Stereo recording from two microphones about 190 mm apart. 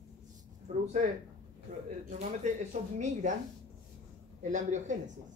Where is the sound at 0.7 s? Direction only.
40° right (ahead or behind).